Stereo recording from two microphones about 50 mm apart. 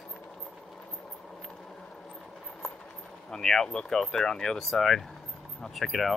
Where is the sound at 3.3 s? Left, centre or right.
Centre.